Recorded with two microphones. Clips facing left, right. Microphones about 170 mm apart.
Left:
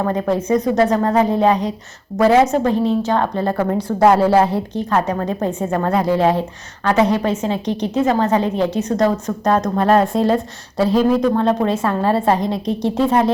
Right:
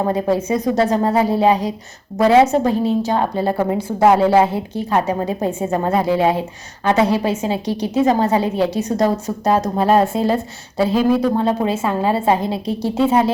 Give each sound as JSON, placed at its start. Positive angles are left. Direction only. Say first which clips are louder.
{"t": 0.0, "sound": "a woman's voice", "louder": "right 1 dB", "side_deg": -15}
{"t": 6.1, "sound": "a woman's voice", "louder": "left 1 dB", "side_deg": -5}